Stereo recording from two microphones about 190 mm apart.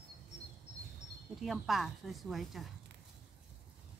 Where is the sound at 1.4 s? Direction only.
Centre (ahead or behind).